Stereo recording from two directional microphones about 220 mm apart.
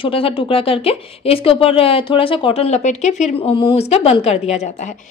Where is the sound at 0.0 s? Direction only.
25° left (ahead or behind).